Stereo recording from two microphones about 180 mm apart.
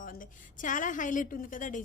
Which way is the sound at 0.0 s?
50° left (ahead or behind).